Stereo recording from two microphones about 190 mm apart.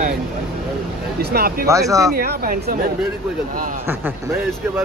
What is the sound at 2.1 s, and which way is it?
Speech, 55° right (ahead or behind).